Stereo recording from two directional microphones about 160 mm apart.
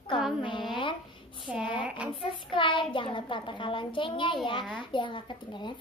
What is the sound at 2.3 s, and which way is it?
A child's voice, 30° left (ahead or behind).